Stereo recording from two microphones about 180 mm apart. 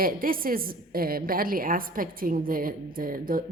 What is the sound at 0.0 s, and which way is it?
Speech, 55° right (ahead or behind).